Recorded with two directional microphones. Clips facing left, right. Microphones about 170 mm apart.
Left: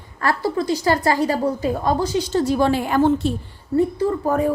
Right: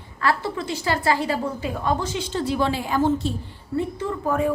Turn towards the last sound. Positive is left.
turn(degrees=40)  # may be behind; listen again after turning